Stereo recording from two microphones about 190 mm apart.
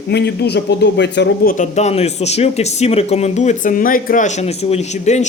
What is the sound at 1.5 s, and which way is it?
A man's voice, 35° left (ahead or behind).